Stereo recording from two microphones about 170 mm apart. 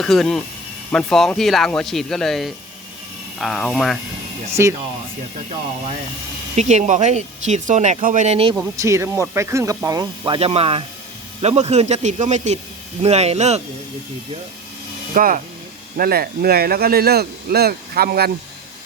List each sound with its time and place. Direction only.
0.0 s speech: centre (ahead or behind)
4.6 s speech: 15° right (ahead or behind)
6.6 s speech: 45° right (ahead or behind)
8.8 s speech: 15° right (ahead or behind); by 13.6 s 40° right (ahead or behind)
15.1 s speech: 55° right (ahead or behind)